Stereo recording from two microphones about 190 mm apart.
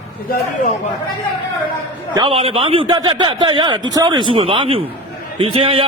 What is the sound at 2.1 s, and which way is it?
A man's voice, 30° right (ahead or behind).